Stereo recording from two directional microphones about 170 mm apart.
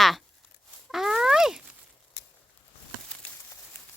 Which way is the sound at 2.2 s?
85° left.